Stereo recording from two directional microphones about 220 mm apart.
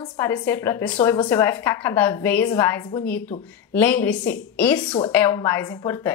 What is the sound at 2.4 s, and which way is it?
Speech, 20° left (ahead or behind).